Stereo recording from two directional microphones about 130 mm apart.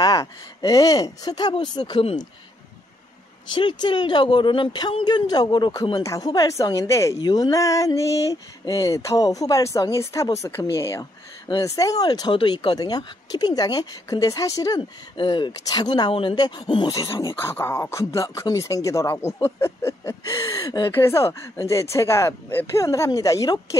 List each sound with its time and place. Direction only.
0.0 s a woman's voice: 25° left (ahead or behind)
3.5 s a woman's voice: 35° left (ahead or behind)
17.4 s a woman's voice: 20° left (ahead or behind)
20.6 s speech: 35° left (ahead or behind)
20.9 s a woman's voice: 20° left (ahead or behind)